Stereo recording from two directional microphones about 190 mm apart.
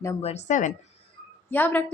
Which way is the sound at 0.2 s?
35° left (ahead or behind).